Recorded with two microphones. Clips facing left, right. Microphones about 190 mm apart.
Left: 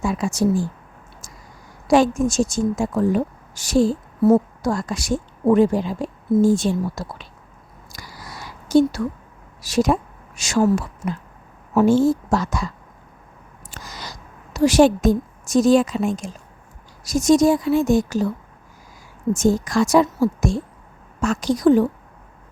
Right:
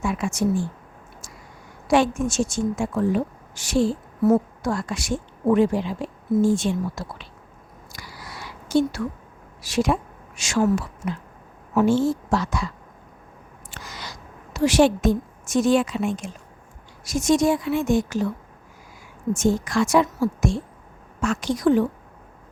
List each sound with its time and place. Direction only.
0.0 s a woman's voice: 35° left (ahead or behind)
1.9 s a woman's voice: 40° left (ahead or behind)
7.9 s a sound: 40° left (ahead or behind)
9.6 s a woman's voice: 40° left (ahead or behind)
13.7 s a sound: 40° left (ahead or behind)
17.0 s a woman's voice: 40° left (ahead or behind)
19.3 s a woman's voice: 40° left (ahead or behind)